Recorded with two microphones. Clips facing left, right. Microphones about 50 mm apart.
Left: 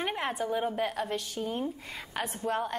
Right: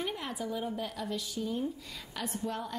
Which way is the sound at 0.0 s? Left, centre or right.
Left.